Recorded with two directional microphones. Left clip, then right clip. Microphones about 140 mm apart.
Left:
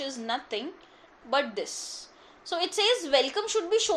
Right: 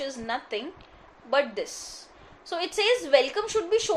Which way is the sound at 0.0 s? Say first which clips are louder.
Right 1 dB; 30° left (ahead or behind).